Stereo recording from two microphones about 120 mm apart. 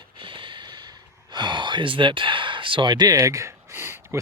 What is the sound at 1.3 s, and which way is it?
Gasp, 40° right (ahead or behind).